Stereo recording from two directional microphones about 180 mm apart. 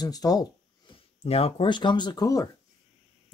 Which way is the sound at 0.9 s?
35° left (ahead or behind).